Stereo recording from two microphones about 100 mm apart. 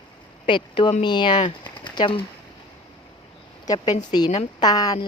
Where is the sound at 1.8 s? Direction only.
55° left (ahead or behind).